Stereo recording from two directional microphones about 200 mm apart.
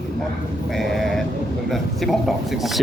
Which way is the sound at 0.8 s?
Centre (ahead or behind).